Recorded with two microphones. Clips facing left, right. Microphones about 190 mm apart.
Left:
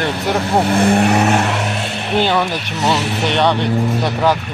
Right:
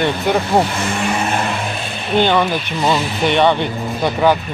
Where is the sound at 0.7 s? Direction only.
60° left (ahead or behind).